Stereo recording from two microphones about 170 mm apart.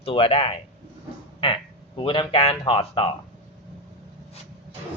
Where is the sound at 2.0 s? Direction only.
30° left (ahead or behind).